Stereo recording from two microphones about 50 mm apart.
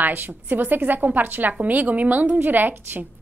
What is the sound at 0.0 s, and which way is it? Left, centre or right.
A woman's voice, right.